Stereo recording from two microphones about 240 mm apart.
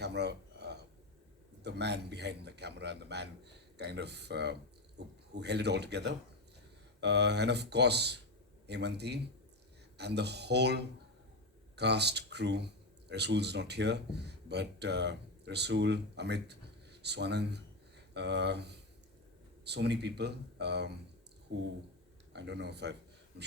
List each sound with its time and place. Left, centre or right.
0.0 s a sound: right
1.6 s a man's voice: right
22.3 s a man's voice: right